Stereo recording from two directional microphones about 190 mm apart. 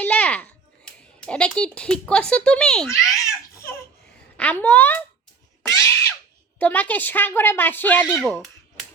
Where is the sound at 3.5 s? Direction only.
15° left (ahead or behind).